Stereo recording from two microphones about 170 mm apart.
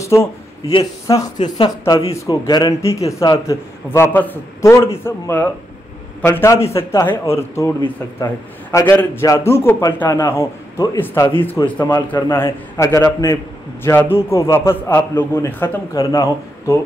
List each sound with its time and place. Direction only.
0.0 s a sound: 15° left (ahead or behind)
0.7 s a man's voice: 20° left (ahead or behind)
8.7 s a man's voice: 15° left (ahead or behind)